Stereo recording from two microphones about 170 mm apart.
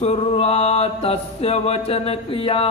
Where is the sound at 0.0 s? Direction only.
35° left (ahead or behind).